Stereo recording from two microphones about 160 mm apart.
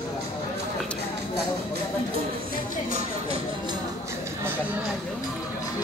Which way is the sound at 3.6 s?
15° right (ahead or behind).